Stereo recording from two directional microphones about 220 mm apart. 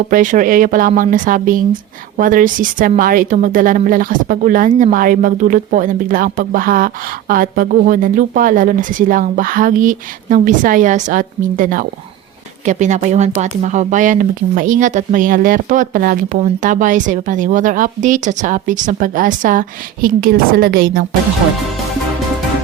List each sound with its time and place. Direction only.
0.1 s a woman's voice: 35° right (ahead or behind)